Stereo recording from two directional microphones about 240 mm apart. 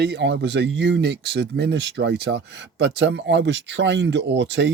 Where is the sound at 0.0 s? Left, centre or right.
Right.